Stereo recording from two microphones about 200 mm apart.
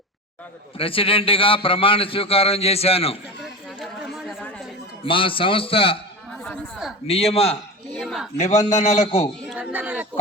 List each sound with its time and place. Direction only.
0.8 s a man's voice: 25° left (ahead or behind)
3.8 s chatter: centre (ahead or behind)
5.0 s a man's voice: 25° left (ahead or behind)
6.4 s speech: centre (ahead or behind)
7.1 s a man's voice: 30° left (ahead or behind)
7.9 s a man's voice: centre (ahead or behind)
8.4 s a man's voice: 35° left (ahead or behind)
9.5 s speech: 5° right (ahead or behind)